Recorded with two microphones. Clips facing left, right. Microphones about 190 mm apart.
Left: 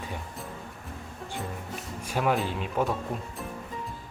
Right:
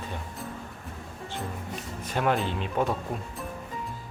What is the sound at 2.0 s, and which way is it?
Speech, 5° left (ahead or behind).